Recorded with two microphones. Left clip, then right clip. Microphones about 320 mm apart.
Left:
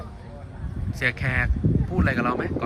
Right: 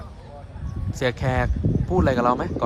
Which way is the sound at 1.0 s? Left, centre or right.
Centre.